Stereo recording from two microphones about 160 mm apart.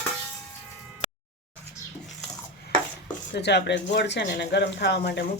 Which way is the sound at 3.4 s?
90° left.